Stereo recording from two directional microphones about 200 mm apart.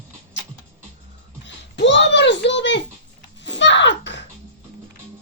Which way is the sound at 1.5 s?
60° left (ahead or behind).